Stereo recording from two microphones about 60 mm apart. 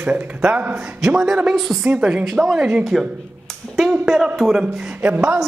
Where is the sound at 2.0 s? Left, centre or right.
Centre.